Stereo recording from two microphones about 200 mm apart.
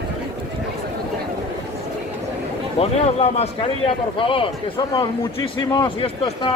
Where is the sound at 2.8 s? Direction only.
30° left (ahead or behind).